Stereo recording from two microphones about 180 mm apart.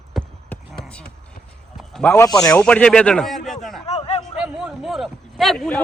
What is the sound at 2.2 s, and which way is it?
A man's voice, 20° left (ahead or behind).